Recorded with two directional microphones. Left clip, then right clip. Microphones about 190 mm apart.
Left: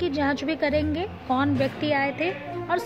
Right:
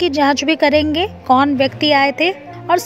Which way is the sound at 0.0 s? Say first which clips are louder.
Right 11 dB; 45° right (ahead or behind).